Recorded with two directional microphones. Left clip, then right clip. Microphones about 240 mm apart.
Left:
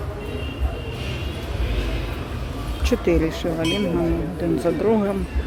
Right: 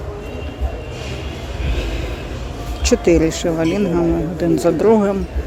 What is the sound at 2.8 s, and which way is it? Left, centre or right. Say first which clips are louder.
Speech: right 7 dB; centre.